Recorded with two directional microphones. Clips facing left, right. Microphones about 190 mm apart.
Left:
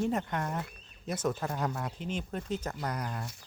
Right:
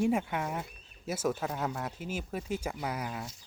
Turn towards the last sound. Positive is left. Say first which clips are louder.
# even
turn(degrees=-5)  # may be behind; listen again after turning